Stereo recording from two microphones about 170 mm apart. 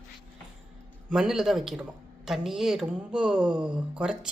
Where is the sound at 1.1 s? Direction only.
5° right (ahead or behind).